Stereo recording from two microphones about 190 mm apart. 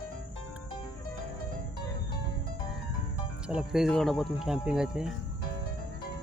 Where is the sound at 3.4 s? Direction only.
5° right (ahead or behind).